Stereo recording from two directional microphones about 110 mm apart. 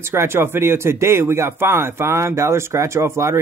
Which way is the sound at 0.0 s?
25° right (ahead or behind).